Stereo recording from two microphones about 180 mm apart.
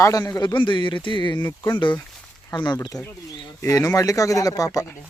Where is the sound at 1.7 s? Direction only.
25° left (ahead or behind).